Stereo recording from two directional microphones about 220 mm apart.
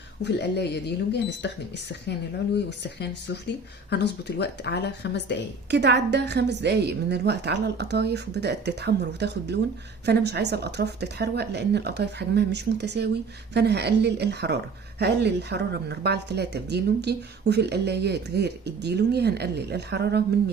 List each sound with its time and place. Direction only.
0.3 s speech: 50° left (ahead or behind)
5.7 s speech: 50° right (ahead or behind)